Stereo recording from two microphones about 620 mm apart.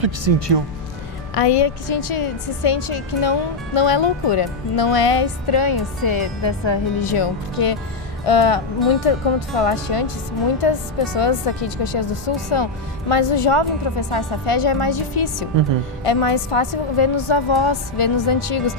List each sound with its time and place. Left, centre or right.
0.0 s speech: right
1.3 s speech: left